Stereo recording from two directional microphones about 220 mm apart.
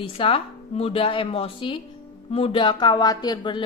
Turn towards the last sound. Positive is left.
turn(degrees=20)  # may be behind; listen again after turning